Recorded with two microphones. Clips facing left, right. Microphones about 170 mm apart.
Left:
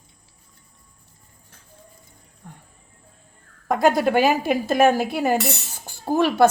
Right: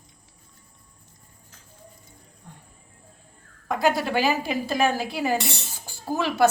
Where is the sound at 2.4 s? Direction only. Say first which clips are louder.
Left 4 dB; 55° left (ahead or behind).